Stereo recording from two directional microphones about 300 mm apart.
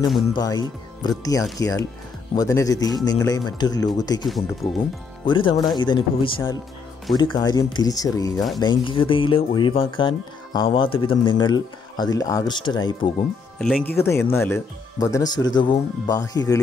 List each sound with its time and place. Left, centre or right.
0.3 s speech: centre
4.3 s speech: centre
5.2 s speech: centre
13.6 s speech: centre